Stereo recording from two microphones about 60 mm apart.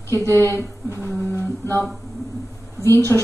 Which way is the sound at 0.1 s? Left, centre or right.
Left.